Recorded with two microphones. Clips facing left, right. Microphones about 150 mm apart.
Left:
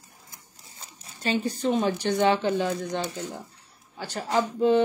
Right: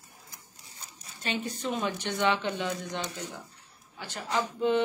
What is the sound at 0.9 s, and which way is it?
A woman's voice, 35° left (ahead or behind).